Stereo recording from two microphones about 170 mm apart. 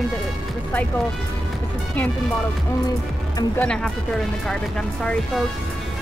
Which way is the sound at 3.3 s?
10° left (ahead or behind).